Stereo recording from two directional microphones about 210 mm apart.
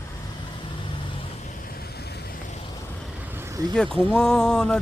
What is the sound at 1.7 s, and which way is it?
Vehicle, 45° left (ahead or behind).